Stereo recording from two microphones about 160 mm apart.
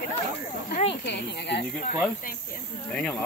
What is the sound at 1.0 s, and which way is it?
Speech, 90° left.